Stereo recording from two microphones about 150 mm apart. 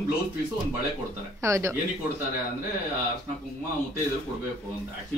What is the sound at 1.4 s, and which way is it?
Speech, 20° right (ahead or behind).